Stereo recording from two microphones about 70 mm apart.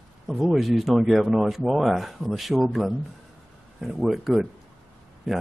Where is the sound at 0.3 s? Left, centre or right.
Centre.